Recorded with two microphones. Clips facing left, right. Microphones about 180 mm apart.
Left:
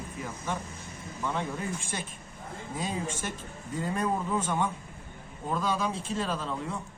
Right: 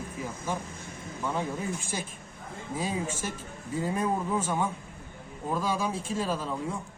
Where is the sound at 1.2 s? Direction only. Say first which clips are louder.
Right 1 dB; 10° right (ahead or behind).